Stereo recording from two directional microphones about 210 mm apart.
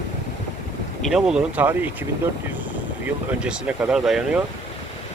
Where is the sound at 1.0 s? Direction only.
Centre (ahead or behind).